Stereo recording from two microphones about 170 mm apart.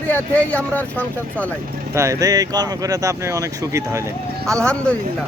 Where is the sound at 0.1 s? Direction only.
10° left (ahead or behind).